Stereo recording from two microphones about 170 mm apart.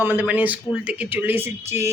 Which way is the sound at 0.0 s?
10° right (ahead or behind).